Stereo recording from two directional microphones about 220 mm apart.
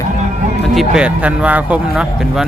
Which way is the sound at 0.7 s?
Centre (ahead or behind).